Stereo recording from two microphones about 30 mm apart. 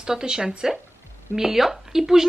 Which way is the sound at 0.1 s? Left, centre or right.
Right.